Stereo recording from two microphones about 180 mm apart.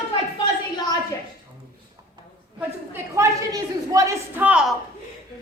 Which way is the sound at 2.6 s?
15° right (ahead or behind).